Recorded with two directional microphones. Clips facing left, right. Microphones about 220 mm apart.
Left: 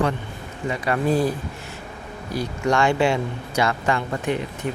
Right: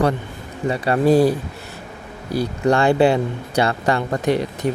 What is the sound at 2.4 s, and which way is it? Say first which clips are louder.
Speech: right 4 dB; 35° right (ahead or behind).